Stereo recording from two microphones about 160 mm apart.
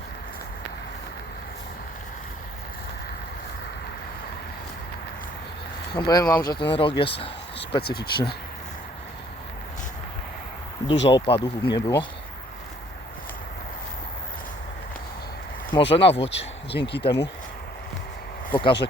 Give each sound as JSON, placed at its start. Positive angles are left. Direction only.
{"t": 5.9, "sound": "speech", "side_deg": 25}
{"t": 7.9, "sound": "speech", "side_deg": 80}
{"t": 10.8, "sound": "speech", "side_deg": 30}
{"t": 15.7, "sound": "speech", "side_deg": 35}
{"t": 16.7, "sound": "speech", "side_deg": 90}
{"t": 18.5, "sound": "speech", "side_deg": 30}